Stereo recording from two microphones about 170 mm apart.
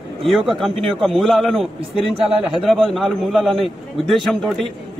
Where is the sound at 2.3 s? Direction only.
30° right (ahead or behind).